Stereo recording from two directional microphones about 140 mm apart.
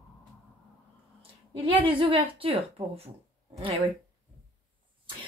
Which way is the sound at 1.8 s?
40° right (ahead or behind).